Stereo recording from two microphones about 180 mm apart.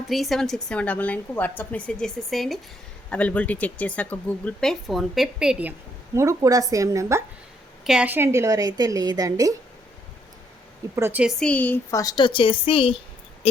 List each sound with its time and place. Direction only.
0.1 s a woman's voice: centre (ahead or behind)
6.1 s a woman's voice: 20° right (ahead or behind)
10.9 s speech: 10° right (ahead or behind); by 13.0 s 30° left (ahead or behind)
13.4 s a sound: 35° left (ahead or behind)